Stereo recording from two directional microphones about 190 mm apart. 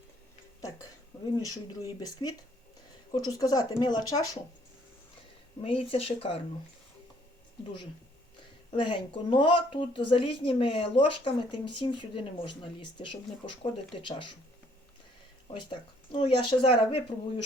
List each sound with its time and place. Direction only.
1.4 s speech: 20° left (ahead or behind)
5.6 s speech: 30° left (ahead or behind)
8.7 s speech: 25° left (ahead or behind)
15.4 s speech: 25° left (ahead or behind)